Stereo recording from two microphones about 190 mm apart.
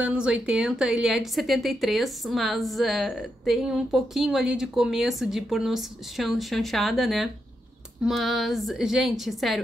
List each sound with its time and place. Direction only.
0.0 s speech: 5° right (ahead or behind)